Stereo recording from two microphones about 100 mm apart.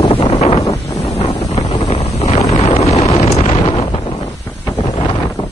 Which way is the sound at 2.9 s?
90° left.